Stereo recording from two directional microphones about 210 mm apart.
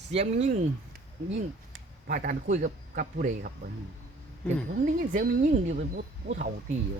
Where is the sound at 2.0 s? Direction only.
40° right (ahead or behind).